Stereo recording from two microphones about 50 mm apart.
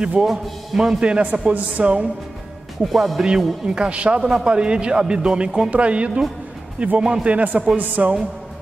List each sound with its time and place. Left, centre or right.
0.2 s a man's voice: centre
1.0 s speech: right
2.8 s a man's voice: centre
3.6 s a woman's voice: centre; by 8.1 s right